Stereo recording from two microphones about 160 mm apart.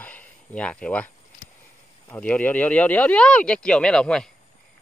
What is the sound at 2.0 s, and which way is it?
Speech, 10° left (ahead or behind).